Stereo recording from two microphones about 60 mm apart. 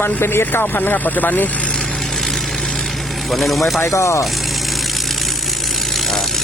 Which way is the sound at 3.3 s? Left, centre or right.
Centre.